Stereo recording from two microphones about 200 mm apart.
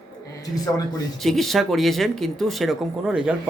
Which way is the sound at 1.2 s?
Centre (ahead or behind).